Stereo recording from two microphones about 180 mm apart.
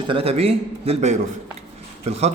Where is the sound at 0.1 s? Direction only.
30° right (ahead or behind).